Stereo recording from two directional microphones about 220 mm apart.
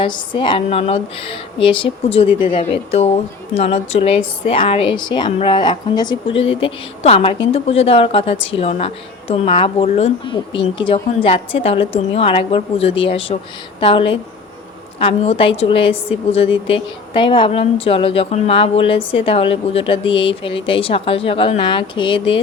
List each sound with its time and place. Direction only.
0.0 s a woman's voice: 20° left (ahead or behind)